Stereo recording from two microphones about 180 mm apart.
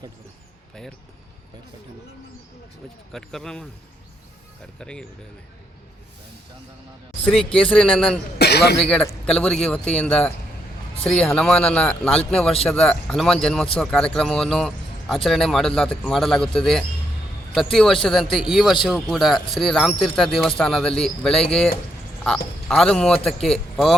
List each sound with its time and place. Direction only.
3.1 s speech: centre (ahead or behind)
4.8 s speech: 5° left (ahead or behind)
7.7 s speech: 5° left (ahead or behind)
8.4 s speech: 65° left (ahead or behind)
8.8 s speech: 5° left (ahead or behind)
22.7 s speech: 5° left (ahead or behind)